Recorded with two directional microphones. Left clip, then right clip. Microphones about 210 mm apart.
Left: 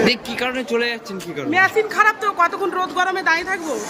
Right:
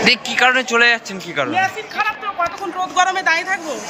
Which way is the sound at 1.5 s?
20° left (ahead or behind).